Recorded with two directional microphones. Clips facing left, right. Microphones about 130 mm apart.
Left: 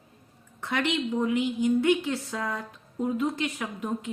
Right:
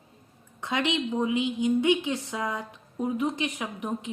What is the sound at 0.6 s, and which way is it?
A woman's voice, 20° right (ahead or behind).